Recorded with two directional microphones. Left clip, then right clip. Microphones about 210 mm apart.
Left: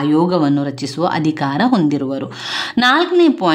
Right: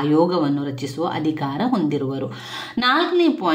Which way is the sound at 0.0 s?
35° left (ahead or behind).